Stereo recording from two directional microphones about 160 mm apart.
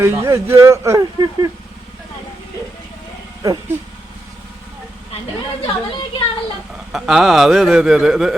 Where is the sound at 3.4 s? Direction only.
20° right (ahead or behind).